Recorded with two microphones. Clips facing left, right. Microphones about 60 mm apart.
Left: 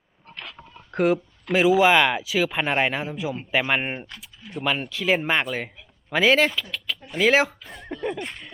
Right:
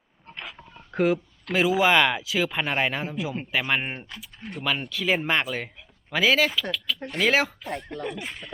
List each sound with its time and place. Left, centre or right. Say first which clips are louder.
0.9 s a sound: left 2 dB; centre
1.8 s speech: left 2 dB; centre
4.4 s speech: right 3 dB; right
4.8 s speech: left 2 dB; centre